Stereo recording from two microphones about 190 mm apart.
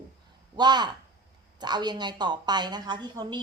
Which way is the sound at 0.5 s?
25° right (ahead or behind).